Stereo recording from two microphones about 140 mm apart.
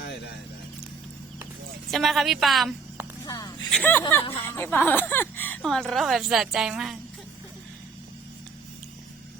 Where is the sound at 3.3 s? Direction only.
25° left (ahead or behind).